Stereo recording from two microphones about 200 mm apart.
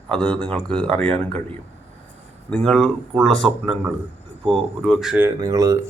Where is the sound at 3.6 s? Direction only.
10° right (ahead or behind).